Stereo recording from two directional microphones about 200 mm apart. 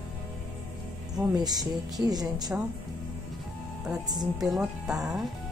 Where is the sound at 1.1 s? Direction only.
20° right (ahead or behind).